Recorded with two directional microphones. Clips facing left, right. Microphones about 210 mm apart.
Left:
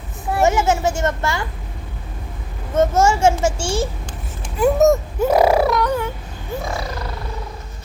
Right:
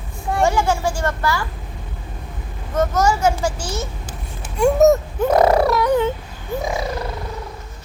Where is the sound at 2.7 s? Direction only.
25° left (ahead or behind).